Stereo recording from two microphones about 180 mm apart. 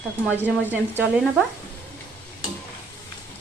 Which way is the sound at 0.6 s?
10° right (ahead or behind).